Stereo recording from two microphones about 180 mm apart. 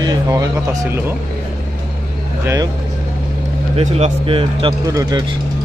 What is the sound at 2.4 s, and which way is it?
Speech, 15° right (ahead or behind).